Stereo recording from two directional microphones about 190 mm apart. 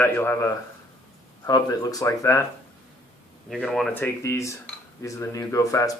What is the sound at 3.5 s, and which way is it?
Speech, centre (ahead or behind).